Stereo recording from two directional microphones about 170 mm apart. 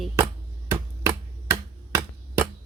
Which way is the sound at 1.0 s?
15° right (ahead or behind).